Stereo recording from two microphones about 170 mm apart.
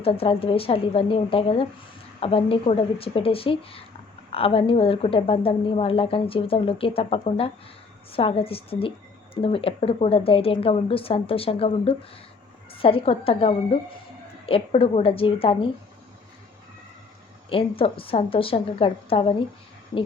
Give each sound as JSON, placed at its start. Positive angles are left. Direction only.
{"t": 0.0, "sound": "speech", "side_deg": 35}
{"t": 17.5, "sound": "speech", "side_deg": 30}